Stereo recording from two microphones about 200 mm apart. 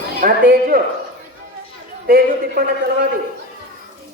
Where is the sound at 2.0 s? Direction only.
50° right (ahead or behind).